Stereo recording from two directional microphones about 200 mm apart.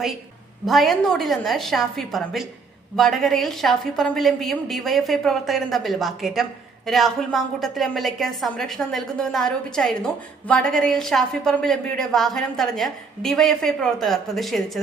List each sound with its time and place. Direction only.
0.6 s a woman's voice: centre (ahead or behind)